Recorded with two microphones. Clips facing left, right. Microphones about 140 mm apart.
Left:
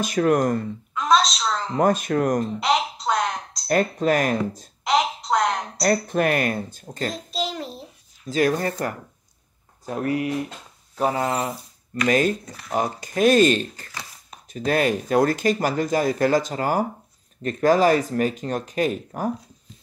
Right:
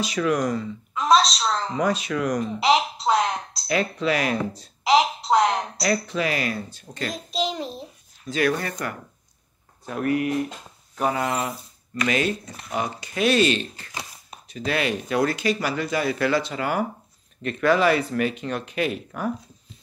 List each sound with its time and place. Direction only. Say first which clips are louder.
0.0 s speech: left 3 dB; 50° left (ahead or behind)
0.9 s a sound: right 1 dB; 5° right (ahead or behind)
1.8 s speech: left 7 dB; 50° left (ahead or behind)
3.6 s speech: left 3 dB; 45° left (ahead or behind)
4.8 s a sound: right 3 dB; 5° right (ahead or behind)
5.8 s speech: left 3 dB; 50° left (ahead or behind)
7.3 s child singing: right 4 dB; 20° right (ahead or behind)
8.3 s speech: left 2 dB; 40° left (ahead or behind)